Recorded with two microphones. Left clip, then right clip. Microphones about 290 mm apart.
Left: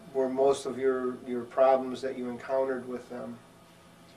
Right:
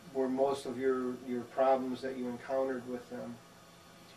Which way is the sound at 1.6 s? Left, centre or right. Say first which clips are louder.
Left 6 dB; centre.